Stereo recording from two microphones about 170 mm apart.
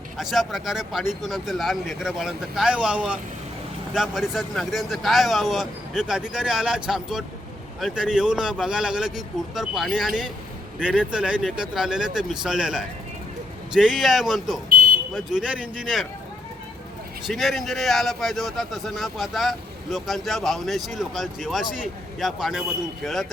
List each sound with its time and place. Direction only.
0.2 s a man's voice: centre (ahead or behind)
17.2 s a man's voice: centre (ahead or behind)